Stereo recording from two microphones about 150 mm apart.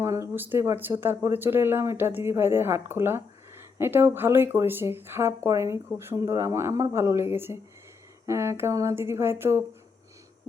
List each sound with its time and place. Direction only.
0.0 s speech: 20° right (ahead or behind)